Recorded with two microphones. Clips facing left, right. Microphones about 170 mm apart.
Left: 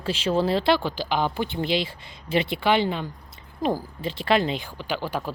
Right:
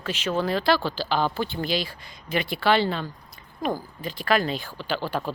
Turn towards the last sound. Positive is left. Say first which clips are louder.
# right 1 dB
turn(degrees=10)  # may be behind; listen again after turning